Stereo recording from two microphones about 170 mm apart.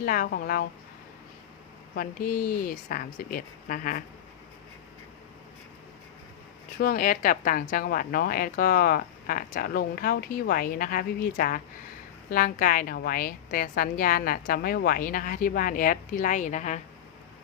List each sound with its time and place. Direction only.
0.0 s speech: 55° left (ahead or behind)
2.0 s speech: 55° left (ahead or behind)
6.7 s speech: 55° left (ahead or behind)